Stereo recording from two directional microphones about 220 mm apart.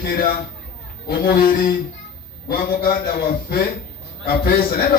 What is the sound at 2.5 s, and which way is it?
A man's voice, 40° left (ahead or behind).